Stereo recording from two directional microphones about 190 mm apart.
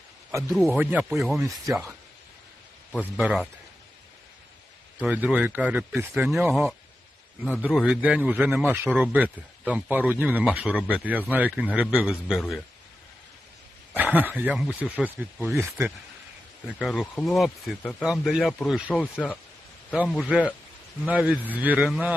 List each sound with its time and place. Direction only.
0.3 s speech: 10° right (ahead or behind)
1.4 s speech: 15° right (ahead or behind)
2.9 s speech: 5° left (ahead or behind)
3.2 s speech: 5° right (ahead or behind)
5.0 s speech: 10° right (ahead or behind)
13.9 s speech: 10° right (ahead or behind)
16.7 s speech: centre (ahead or behind)
19.9 s speech: 5° right (ahead or behind)